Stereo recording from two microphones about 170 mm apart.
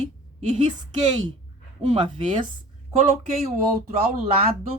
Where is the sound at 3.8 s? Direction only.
40° right (ahead or behind).